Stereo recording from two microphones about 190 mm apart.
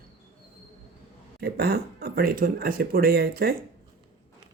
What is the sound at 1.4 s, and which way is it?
Speech, 55° right (ahead or behind).